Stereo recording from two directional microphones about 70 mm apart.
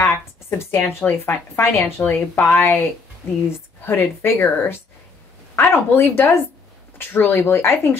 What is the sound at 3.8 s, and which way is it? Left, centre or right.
Speech, left.